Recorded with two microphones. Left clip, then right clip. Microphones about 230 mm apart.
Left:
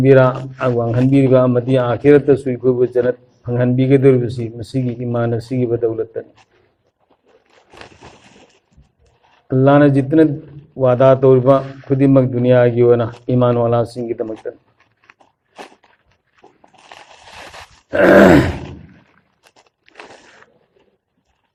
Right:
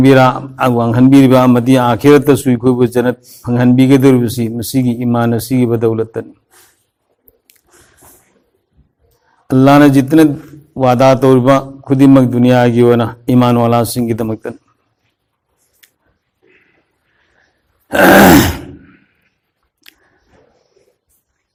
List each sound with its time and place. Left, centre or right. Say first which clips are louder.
0.0 s a man's voice: right 3 dB; right
9.5 s a man's voice: right 4 dB; right
17.8 s groan: right 3 dB; right
19.9 s a sound: left 2 dB; right